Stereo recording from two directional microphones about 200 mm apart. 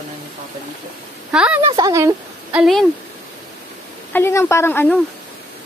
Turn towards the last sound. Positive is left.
turn(degrees=10)  # may be behind; listen again after turning